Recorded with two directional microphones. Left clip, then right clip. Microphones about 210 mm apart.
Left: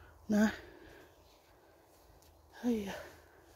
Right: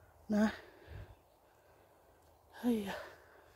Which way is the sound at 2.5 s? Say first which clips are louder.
Even; 5° right (ahead or behind).